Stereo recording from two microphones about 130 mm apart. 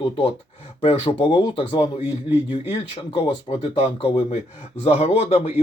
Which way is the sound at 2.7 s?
55° left (ahead or behind).